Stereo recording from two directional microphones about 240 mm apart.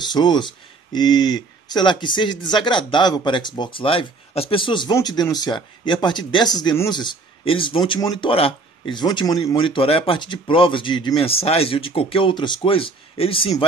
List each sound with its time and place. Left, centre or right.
0.0 s speech: centre